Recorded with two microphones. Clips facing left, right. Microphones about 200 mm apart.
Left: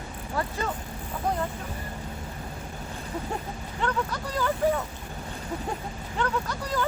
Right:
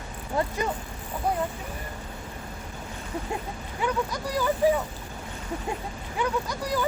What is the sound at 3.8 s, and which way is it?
Speech, 10° right (ahead or behind).